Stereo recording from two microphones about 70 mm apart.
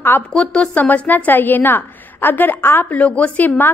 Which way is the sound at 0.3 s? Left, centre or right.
Centre.